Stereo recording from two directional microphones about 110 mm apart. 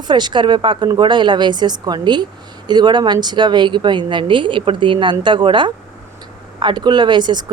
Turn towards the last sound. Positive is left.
turn(degrees=-40)  # may be behind; listen again after turning